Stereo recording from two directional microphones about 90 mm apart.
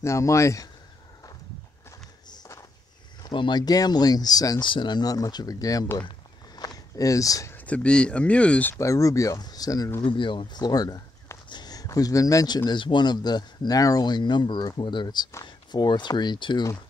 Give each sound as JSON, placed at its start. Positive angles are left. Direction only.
{"t": 0.0, "sound": "speech", "side_deg": 35}
{"t": 2.2, "sound": "a sound", "side_deg": 50}
{"t": 3.3, "sound": "speech", "side_deg": 55}
{"t": 4.6, "sound": "speech", "side_deg": 60}
{"t": 5.9, "sound": "a sound", "side_deg": 50}
{"t": 7.5, "sound": "speech", "side_deg": 15}
{"t": 8.7, "sound": "speech", "side_deg": 35}
{"t": 10.0, "sound": "speech", "side_deg": 65}